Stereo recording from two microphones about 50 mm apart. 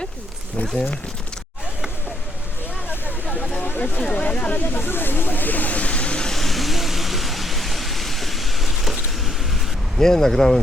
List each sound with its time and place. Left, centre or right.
3.8 s speech: left
4.5 s speech: left; by 6.3 s centre
6.3 s vehicle: centre
10.0 s speech: centre